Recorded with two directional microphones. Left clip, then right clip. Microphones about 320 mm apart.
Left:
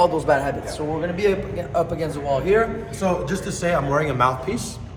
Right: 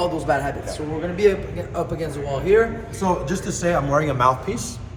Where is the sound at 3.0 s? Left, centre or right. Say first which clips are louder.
Right 1 dB; centre.